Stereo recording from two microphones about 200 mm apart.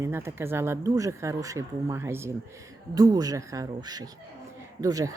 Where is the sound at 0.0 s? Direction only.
15° right (ahead or behind).